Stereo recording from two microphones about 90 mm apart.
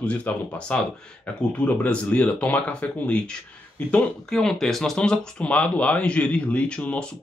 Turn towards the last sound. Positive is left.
turn(degrees=10)  # may be behind; listen again after turning